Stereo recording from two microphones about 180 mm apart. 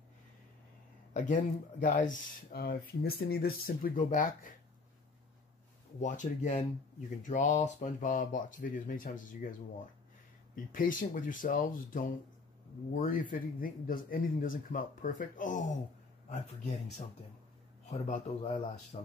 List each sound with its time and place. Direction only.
1.1 s speech: 45° left (ahead or behind)
5.9 s speech: 45° left (ahead or behind)
10.5 s speech: 50° left (ahead or behind)
17.8 s a man's voice: 40° left (ahead or behind)